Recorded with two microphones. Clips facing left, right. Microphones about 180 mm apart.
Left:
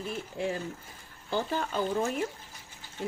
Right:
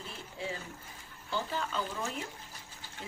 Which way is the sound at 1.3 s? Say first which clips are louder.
Left 5 dB; 50° left (ahead or behind).